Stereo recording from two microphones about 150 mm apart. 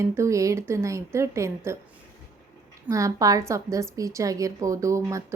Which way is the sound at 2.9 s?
20° right (ahead or behind).